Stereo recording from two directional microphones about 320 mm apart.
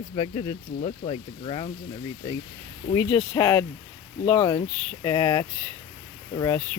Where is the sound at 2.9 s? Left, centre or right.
Centre.